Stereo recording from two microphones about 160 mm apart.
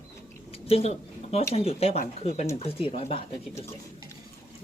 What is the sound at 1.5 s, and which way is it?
Speech, 40° left (ahead or behind).